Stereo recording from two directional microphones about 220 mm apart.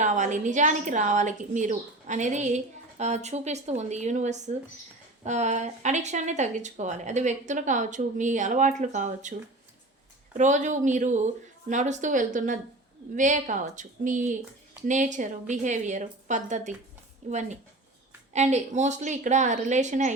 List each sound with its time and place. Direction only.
0.0 s speech: 35° right (ahead or behind)
10.3 s speech: 35° right (ahead or behind)